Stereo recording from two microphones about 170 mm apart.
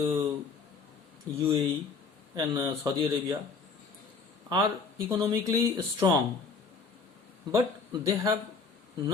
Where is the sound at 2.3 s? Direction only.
25° right (ahead or behind).